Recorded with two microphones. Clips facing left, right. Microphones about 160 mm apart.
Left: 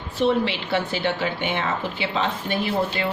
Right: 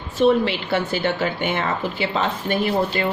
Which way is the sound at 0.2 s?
45° right (ahead or behind).